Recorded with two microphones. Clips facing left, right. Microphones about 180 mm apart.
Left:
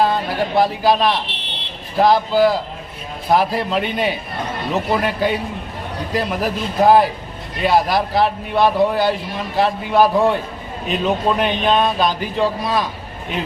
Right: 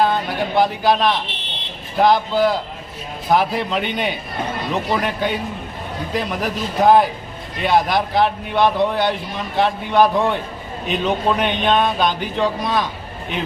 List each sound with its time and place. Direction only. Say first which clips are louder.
0.0 s a man's voice: left 1 dB; centre (ahead or behind)